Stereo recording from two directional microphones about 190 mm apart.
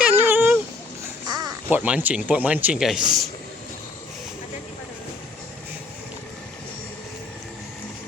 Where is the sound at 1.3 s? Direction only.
20° right (ahead or behind).